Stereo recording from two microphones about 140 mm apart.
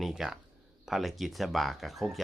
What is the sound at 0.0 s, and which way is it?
Speech, centre (ahead or behind).